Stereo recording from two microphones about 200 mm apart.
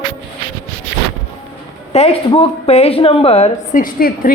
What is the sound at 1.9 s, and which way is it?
A woman's voice, 30° left (ahead or behind).